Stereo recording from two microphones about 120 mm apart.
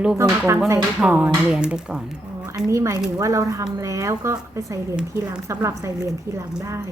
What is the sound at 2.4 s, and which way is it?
A woman's voice, 25° right (ahead or behind).